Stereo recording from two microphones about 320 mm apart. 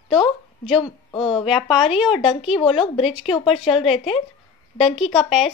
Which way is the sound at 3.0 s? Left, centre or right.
Centre.